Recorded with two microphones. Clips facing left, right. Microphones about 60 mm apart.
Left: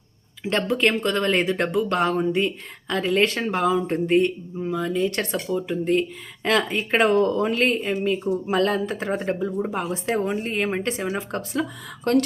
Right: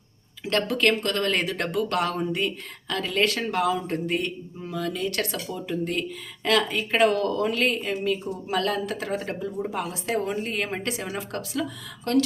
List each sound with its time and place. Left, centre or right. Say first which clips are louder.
0.4 s speech: left 1 dB; left
11.3 s speech: left 4 dB; left